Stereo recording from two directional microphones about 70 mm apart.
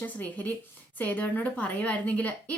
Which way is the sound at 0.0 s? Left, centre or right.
Left.